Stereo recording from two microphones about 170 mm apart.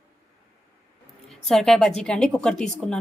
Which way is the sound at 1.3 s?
Centre (ahead or behind).